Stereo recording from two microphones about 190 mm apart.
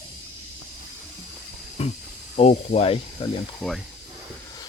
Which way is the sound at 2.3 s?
35° left (ahead or behind).